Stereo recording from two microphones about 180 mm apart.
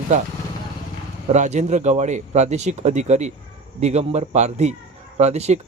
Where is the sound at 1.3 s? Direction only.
40° right (ahead or behind).